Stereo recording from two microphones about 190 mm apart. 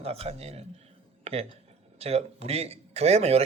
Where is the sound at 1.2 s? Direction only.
30° right (ahead or behind).